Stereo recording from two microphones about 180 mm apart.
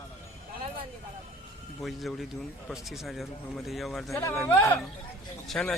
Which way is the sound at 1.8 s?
Centre (ahead or behind).